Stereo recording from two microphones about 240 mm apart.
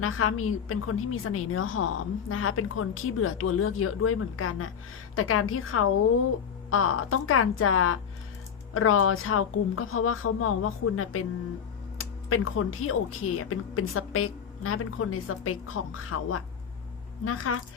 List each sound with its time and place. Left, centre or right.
0.0 s a woman's voice: left